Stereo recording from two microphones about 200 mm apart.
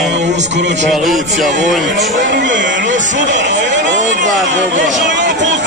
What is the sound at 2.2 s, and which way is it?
Speech, 65° right (ahead or behind).